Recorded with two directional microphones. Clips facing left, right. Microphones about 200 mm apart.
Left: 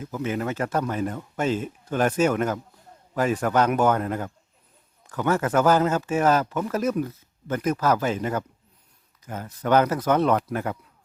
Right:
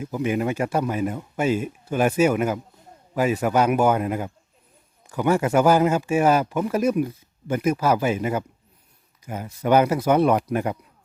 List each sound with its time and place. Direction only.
0.0 s speech: 15° right (ahead or behind)